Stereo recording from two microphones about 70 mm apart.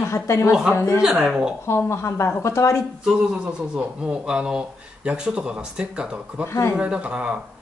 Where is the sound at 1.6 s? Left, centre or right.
Left.